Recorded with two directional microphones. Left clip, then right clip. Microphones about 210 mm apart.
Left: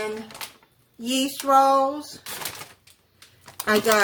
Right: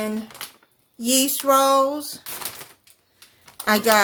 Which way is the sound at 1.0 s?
50° right (ahead or behind).